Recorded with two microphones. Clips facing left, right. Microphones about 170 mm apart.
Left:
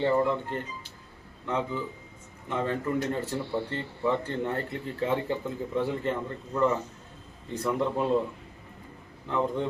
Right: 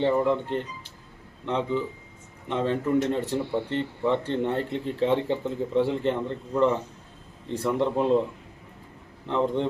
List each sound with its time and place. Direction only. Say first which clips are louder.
0.0 s speech: right 2 dB; 20° right (ahead or behind)
7.4 s speech: right 3 dB; 30° right (ahead or behind)
9.2 s speech: right 3 dB; 25° right (ahead or behind)